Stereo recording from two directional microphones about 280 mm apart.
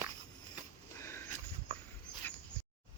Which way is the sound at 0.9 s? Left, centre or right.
Centre.